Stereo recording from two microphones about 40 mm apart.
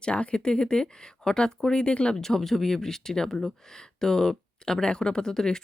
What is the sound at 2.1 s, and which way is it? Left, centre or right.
Speech, centre.